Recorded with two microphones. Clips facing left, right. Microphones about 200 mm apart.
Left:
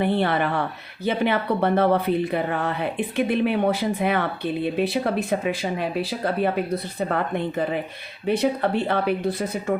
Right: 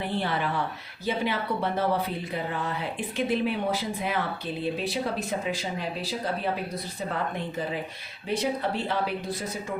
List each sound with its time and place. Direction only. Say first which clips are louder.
0.0 s speech: left 7 dB; 60° left (ahead or behind)